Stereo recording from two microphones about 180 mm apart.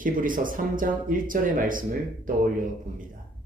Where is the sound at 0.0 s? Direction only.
50° right (ahead or behind).